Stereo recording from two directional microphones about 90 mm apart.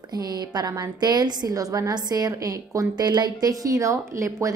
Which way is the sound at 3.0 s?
50° right (ahead or behind).